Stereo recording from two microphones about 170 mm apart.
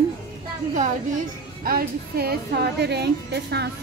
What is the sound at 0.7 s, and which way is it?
A woman's voice, 50° right (ahead or behind).